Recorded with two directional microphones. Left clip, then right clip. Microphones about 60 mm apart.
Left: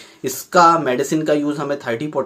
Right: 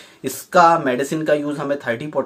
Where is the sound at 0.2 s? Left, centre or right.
Centre.